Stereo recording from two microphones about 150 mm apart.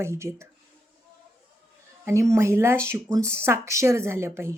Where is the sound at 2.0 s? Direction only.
20° right (ahead or behind).